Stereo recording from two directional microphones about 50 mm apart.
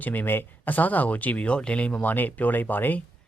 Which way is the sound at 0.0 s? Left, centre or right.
Left.